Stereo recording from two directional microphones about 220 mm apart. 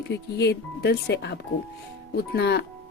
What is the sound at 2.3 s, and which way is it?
Speech, 50° left (ahead or behind).